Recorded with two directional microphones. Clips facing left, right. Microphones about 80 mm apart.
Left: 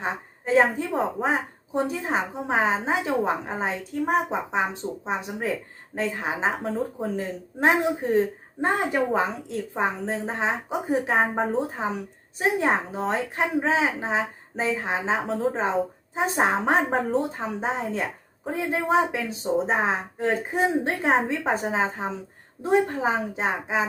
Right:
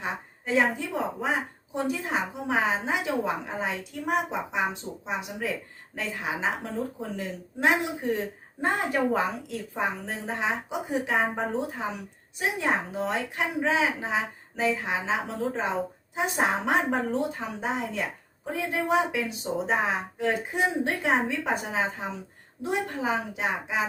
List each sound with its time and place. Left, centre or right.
0.0 s a woman's voice: left
8.6 s a woman's voice: left